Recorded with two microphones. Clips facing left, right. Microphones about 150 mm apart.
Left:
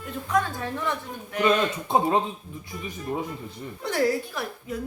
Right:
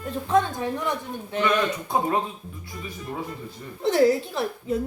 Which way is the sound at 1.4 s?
25° left (ahead or behind).